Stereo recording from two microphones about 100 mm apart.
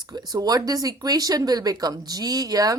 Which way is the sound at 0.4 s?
40° right (ahead or behind).